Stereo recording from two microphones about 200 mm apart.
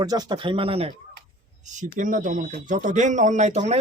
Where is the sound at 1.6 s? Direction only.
40° right (ahead or behind).